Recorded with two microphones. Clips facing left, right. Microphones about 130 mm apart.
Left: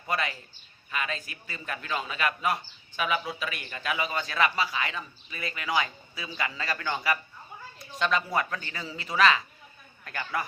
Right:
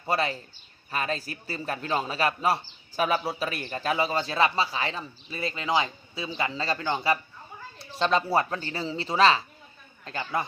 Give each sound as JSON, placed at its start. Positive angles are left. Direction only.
{"t": 0.0, "sound": "a man's voice", "side_deg": -30}